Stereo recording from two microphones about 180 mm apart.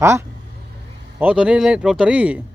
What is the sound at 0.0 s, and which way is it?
A man's voice, 15° right (ahead or behind).